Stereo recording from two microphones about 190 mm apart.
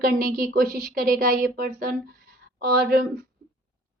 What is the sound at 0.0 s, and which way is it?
A woman's voice, 50° right (ahead or behind).